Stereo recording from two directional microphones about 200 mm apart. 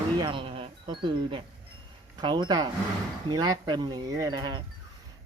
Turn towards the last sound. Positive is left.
turn(degrees=-20)  # may be behind; listen again after turning